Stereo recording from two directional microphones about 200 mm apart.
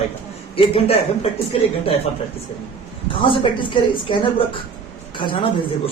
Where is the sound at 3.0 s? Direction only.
25° left (ahead or behind).